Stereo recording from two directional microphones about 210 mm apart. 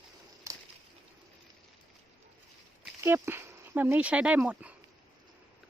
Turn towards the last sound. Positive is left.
turn(degrees=-5)  # may be behind; listen again after turning